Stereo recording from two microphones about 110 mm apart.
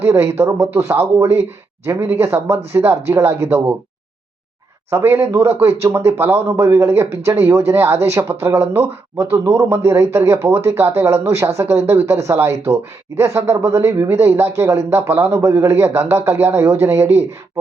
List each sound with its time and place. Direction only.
0.0 s speech: 25° right (ahead or behind)
4.9 s speech: 25° right (ahead or behind)